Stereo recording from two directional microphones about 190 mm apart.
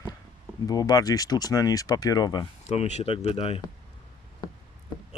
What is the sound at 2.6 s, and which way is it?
Speech, 35° left (ahead or behind).